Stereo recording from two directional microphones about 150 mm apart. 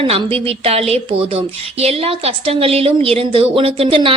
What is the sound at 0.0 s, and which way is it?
A woman's voice, 40° right (ahead or behind).